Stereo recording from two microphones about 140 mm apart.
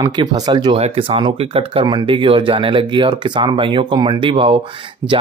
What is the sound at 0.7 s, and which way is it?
Speech, 45° right (ahead or behind).